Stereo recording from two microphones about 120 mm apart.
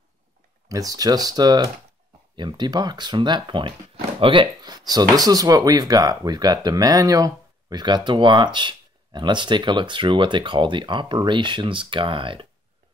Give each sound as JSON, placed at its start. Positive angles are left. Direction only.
{"t": 0.7, "sound": "speech", "side_deg": -30}